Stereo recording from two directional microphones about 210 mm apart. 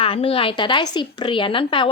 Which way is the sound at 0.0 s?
25° left (ahead or behind).